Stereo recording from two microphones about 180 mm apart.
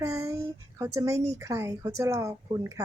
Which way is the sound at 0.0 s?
15° right (ahead or behind).